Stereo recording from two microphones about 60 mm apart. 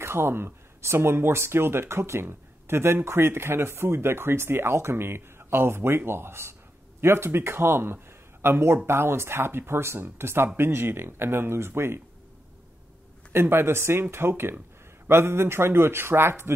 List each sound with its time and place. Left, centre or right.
0.0 s speech: right
13.3 s speech: right